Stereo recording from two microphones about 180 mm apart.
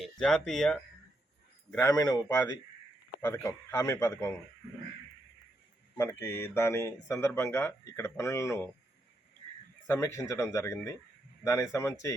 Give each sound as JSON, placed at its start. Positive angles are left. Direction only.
{"t": 0.0, "sound": "speech", "side_deg": 0}
{"t": 1.8, "sound": "speech", "side_deg": 20}
{"t": 6.0, "sound": "speech", "side_deg": 15}
{"t": 9.8, "sound": "speech", "side_deg": 15}